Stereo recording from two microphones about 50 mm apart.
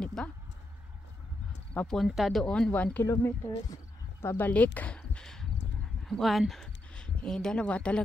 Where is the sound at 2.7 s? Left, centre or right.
Left.